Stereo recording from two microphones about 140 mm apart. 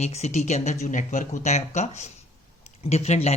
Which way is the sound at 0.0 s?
55° left (ahead or behind).